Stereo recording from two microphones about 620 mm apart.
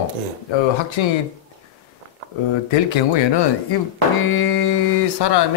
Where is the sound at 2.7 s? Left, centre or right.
Left.